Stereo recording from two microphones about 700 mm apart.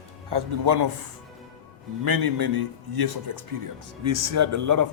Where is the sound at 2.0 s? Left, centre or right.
Right.